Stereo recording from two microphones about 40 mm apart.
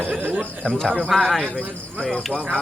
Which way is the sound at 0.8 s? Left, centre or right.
Centre.